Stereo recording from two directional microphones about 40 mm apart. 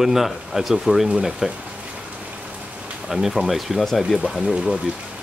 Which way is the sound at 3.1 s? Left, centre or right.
Centre.